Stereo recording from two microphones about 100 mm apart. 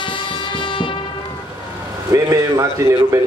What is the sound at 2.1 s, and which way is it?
A man's voice, 30° right (ahead or behind).